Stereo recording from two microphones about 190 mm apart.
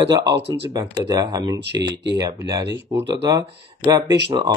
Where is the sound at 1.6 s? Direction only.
65° right (ahead or behind).